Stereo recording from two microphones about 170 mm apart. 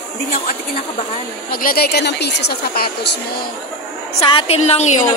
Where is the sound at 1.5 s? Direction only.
60° left (ahead or behind); by 2.9 s 75° left (ahead or behind).